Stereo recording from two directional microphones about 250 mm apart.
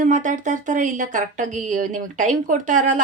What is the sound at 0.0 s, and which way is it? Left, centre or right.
A woman's voice, right.